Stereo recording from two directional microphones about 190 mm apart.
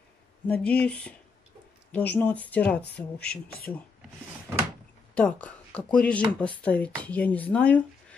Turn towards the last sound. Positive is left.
turn(degrees=5)  # may be behind; listen again after turning